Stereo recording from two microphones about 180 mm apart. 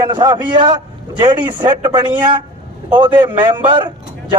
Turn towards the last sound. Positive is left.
turn(degrees=-25)  # may be behind; listen again after turning